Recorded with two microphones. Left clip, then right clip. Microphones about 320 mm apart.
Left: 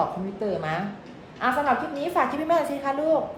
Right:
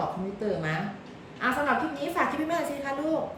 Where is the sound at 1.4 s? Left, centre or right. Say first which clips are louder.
Left 3 dB; centre.